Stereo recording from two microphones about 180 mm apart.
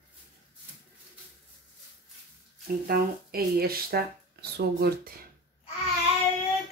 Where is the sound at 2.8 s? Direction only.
60° right (ahead or behind).